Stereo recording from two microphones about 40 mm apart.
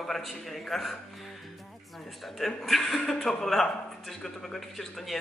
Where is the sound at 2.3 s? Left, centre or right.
Centre.